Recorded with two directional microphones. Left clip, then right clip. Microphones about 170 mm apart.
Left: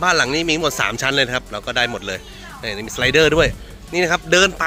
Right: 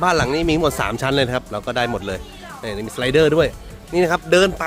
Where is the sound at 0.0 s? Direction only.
20° right (ahead or behind).